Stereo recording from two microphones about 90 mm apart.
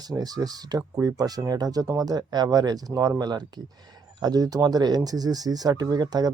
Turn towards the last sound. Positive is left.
turn(degrees=-45)  # may be behind; listen again after turning